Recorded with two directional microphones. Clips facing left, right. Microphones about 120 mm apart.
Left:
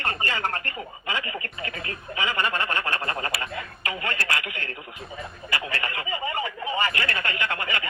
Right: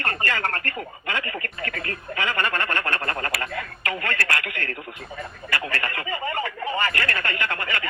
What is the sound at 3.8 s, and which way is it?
Speech, 50° right (ahead or behind).